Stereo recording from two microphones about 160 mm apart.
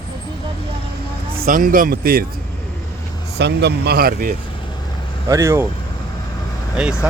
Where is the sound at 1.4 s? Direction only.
60° right (ahead or behind).